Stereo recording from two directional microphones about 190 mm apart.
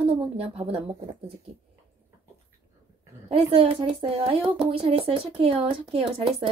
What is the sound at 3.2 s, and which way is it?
Speech, 30° right (ahead or behind).